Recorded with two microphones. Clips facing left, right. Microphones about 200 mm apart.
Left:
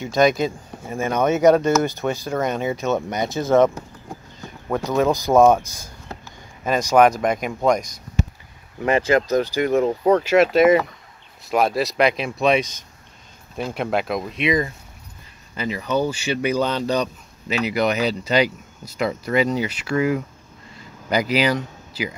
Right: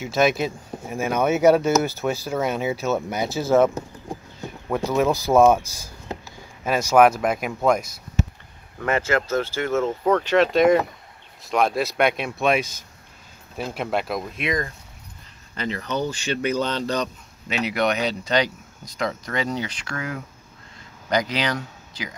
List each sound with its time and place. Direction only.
0.0 s speech: 5° right (ahead or behind)
6.6 s speech: 5° right (ahead or behind)
8.7 s speech: 15° left (ahead or behind)